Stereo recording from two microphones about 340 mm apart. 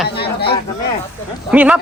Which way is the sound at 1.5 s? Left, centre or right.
Centre.